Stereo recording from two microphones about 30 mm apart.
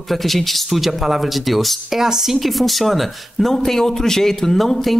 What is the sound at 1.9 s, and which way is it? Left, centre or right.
Speech, centre.